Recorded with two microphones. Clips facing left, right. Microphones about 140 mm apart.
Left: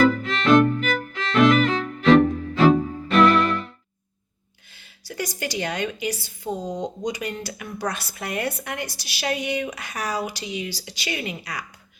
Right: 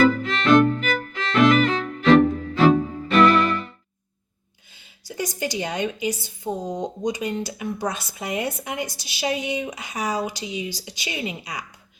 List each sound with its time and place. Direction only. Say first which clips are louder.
0.0 s violin: even; centre (ahead or behind)
4.8 s a woman's voice: right 1 dB; 20° right (ahead or behind)